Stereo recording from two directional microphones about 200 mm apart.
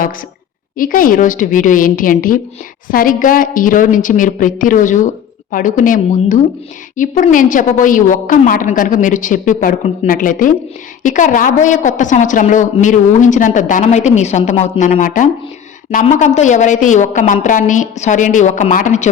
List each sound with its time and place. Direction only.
0.8 s a woman's voice: 45° left (ahead or behind)